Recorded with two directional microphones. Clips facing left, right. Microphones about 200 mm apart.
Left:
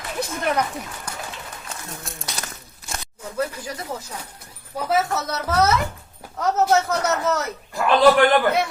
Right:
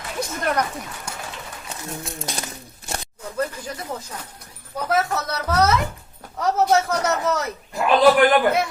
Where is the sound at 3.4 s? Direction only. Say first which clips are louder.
Even; 10° left (ahead or behind).